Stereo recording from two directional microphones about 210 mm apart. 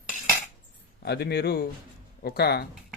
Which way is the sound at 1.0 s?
50° left (ahead or behind).